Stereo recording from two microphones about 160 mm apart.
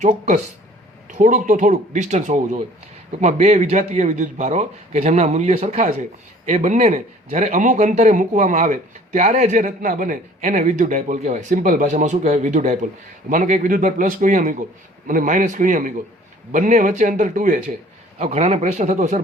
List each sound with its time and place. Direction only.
0.0 s a man's voice: 50° right (ahead or behind)
18.2 s a man's voice: 40° right (ahead or behind)